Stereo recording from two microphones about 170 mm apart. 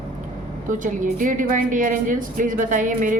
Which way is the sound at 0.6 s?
50° right (ahead or behind).